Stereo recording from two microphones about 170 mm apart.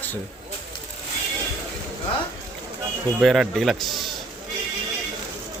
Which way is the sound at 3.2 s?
Centre (ahead or behind).